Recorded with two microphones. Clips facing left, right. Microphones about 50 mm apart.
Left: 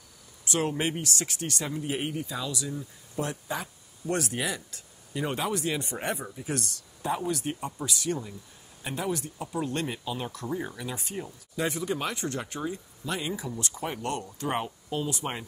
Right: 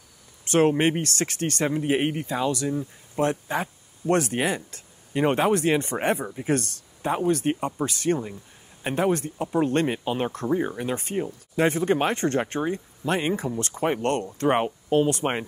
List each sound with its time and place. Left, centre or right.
0.5 s speech: right